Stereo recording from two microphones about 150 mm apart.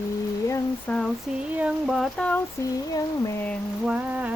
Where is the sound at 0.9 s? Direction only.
10° left (ahead or behind).